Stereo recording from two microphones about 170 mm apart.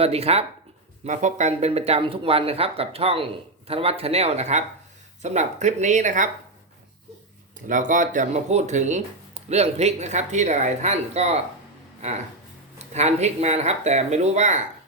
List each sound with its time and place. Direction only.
0.0 s speech: 35° right (ahead or behind)
7.7 s speech: 50° right (ahead or behind)
12.8 s speech: 40° right (ahead or behind)